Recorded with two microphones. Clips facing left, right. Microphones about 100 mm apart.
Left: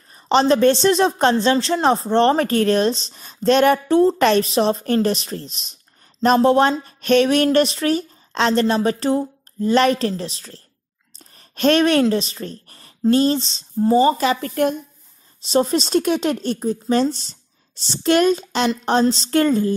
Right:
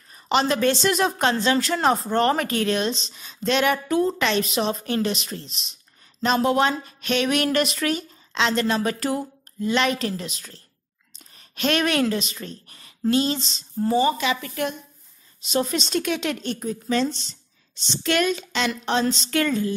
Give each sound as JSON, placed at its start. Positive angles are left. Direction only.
{"t": 0.1, "sound": "speech", "side_deg": 35}
{"t": 15.4, "sound": "speech", "side_deg": 35}